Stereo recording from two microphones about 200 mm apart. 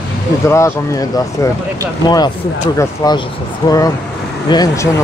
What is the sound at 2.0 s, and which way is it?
Speech, 20° left (ahead or behind).